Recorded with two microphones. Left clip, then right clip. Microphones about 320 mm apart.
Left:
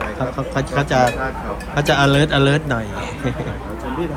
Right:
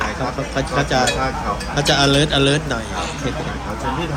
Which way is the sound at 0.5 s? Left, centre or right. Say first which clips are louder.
Even; left.